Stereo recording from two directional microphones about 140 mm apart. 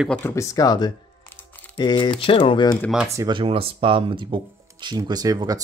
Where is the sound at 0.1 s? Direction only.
20° left (ahead or behind).